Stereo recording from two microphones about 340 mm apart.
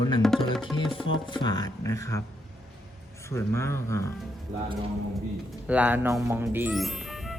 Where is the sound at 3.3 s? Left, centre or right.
Centre.